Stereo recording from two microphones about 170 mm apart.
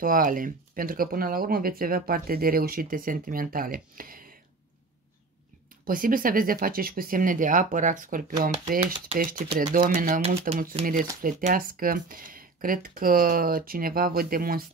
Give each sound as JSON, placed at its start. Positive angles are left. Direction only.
{"t": 0.0, "sound": "speech", "side_deg": -55}
{"t": 5.9, "sound": "speech", "side_deg": -55}